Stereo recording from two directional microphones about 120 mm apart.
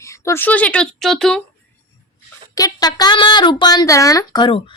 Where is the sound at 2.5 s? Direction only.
30° left (ahead or behind).